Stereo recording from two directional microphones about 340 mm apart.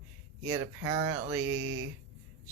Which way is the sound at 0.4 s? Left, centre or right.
Centre.